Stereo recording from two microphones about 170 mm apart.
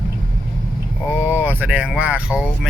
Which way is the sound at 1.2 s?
10° right (ahead or behind).